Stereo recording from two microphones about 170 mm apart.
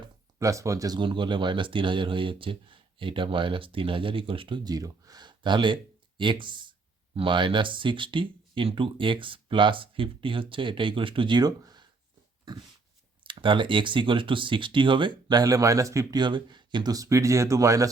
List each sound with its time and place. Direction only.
0.3 s speech: 20° right (ahead or behind)
13.2 s speech: 30° right (ahead or behind)